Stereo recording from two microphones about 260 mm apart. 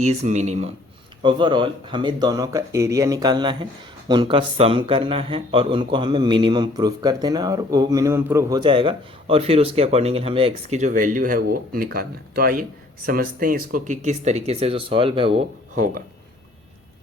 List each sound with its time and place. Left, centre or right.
0.0 s a man's voice: right